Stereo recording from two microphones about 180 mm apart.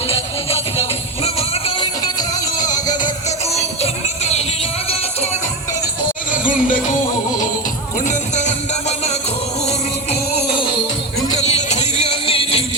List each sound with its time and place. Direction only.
0.1 s music: 35° left (ahead or behind)
3.2 s music: 35° left (ahead or behind)
6.3 s music: 45° left (ahead or behind)
11.3 s music: 40° left (ahead or behind)